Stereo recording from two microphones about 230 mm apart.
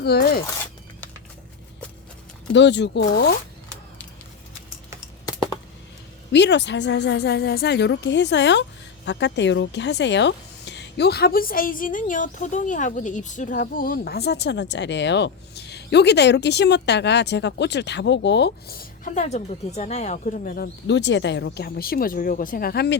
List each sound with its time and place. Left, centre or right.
0.0 s speech: left
2.5 s speech: left
5.2 s computer keyboard: centre
6.3 s speech: left